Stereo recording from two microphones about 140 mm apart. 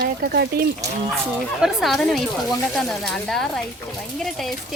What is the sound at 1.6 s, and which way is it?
Speech, centre (ahead or behind).